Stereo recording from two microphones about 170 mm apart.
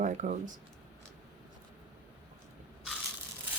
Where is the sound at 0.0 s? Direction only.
45° right (ahead or behind).